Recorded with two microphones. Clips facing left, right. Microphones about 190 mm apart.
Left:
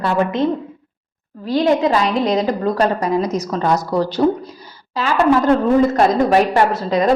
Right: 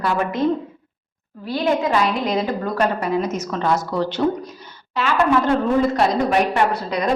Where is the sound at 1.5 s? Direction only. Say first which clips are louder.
Left 4 dB; 35° left (ahead or behind).